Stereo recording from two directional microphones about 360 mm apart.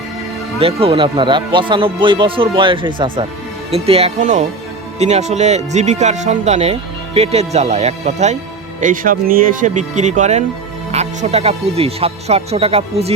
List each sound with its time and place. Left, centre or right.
0.6 s speech: centre